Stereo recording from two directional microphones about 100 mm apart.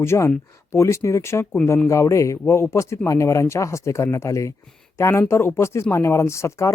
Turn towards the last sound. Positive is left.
turn(degrees=30)  # may be behind; listen again after turning